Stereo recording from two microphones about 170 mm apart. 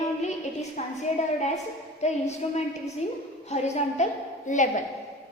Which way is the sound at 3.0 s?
40° left (ahead or behind).